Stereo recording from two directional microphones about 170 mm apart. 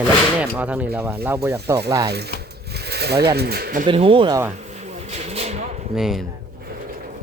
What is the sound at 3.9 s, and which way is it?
Speech, 30° right (ahead or behind).